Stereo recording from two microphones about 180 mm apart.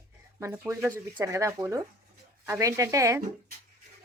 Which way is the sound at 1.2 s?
15° right (ahead or behind).